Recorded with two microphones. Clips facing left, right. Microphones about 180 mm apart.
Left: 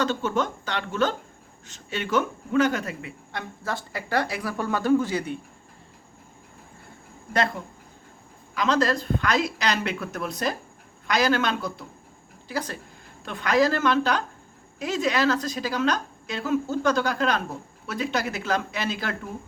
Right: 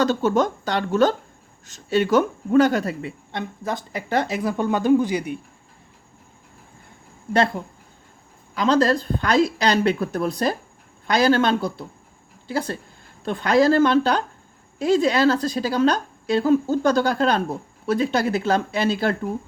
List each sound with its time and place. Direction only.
0.0 s a woman's voice: 40° right (ahead or behind)
3.3 s speech: 20° right (ahead or behind)
8.5 s a woman's voice: 30° right (ahead or behind)